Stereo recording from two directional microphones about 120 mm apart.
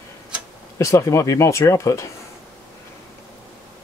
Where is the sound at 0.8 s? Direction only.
25° left (ahead or behind).